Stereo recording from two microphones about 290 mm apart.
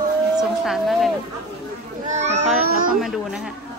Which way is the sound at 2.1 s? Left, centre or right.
Right.